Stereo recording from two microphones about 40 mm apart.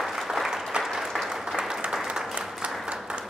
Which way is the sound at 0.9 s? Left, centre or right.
Centre.